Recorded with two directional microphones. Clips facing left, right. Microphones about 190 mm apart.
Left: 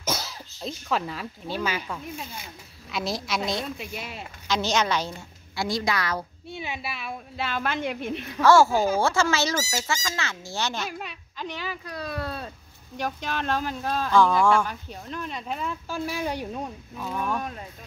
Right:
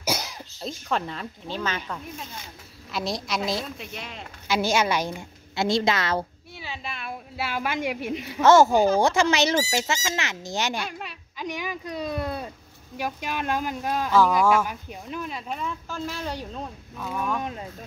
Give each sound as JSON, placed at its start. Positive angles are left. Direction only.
{"t": 0.0, "sound": "cough", "side_deg": -15}
{"t": 0.6, "sound": "speech", "side_deg": 0}
{"t": 4.5, "sound": "a woman's voice", "side_deg": -10}
{"t": 5.7, "sound": "a woman's voice", "side_deg": -25}
{"t": 6.5, "sound": "a sound", "side_deg": 20}
{"t": 6.8, "sound": "a woman's voice", "side_deg": 5}
{"t": 8.4, "sound": "a woman's voice", "side_deg": -20}
{"t": 10.9, "sound": "speech", "side_deg": 0}
{"t": 11.3, "sound": "a woman's voice", "side_deg": -15}
{"t": 17.4, "sound": "a woman's voice", "side_deg": -20}